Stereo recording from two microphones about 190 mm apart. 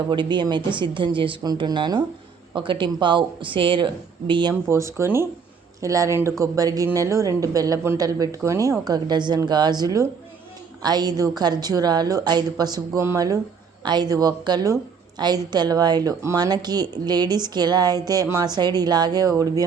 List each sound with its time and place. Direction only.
0.1 s speech: 25° right (ahead or behind)
4.7 s speech: 15° right (ahead or behind)